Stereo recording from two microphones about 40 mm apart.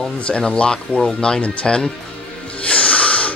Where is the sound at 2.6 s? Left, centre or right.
Left.